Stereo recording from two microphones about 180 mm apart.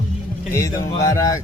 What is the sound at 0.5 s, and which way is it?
Speech, 15° left (ahead or behind).